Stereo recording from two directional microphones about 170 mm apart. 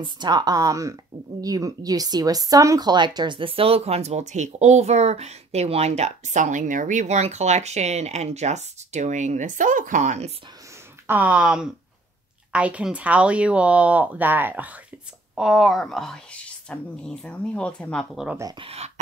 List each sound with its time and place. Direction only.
0.0 s speech: 25° right (ahead or behind); by 10.3 s 45° right (ahead or behind)
11.1 s a woman's voice: 10° right (ahead or behind)
18.6 s speech: 35° right (ahead or behind)